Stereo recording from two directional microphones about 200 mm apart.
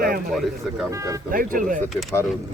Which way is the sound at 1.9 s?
Centre (ahead or behind).